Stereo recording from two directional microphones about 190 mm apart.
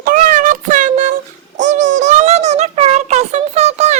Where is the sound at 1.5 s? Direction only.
40° right (ahead or behind).